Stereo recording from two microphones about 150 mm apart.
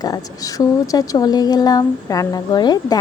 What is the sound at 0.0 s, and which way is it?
A woman's voice, 25° left (ahead or behind).